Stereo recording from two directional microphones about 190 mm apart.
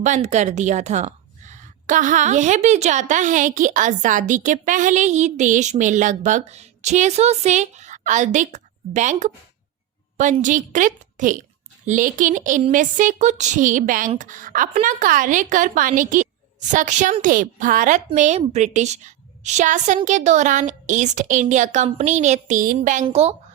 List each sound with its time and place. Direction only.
0.0 s a woman's voice: 40° right (ahead or behind)